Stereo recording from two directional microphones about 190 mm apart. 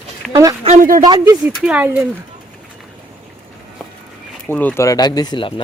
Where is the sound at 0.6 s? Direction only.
40° right (ahead or behind).